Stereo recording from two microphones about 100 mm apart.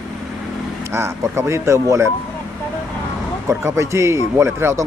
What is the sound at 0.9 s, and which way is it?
A man's voice, 25° right (ahead or behind).